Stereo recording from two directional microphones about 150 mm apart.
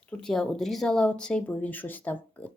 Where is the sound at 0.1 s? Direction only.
5° left (ahead or behind).